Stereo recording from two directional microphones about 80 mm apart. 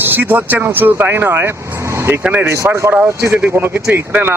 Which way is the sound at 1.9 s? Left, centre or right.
Right.